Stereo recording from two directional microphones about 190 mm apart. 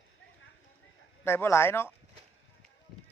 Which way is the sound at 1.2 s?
10° left (ahead or behind).